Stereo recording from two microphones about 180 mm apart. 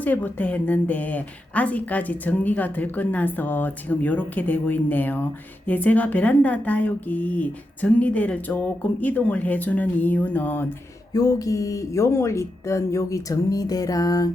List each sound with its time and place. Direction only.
0.0 s a woman's voice: 10° left (ahead or behind)